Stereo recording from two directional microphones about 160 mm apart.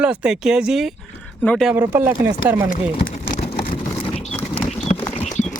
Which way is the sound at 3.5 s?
50° left (ahead or behind).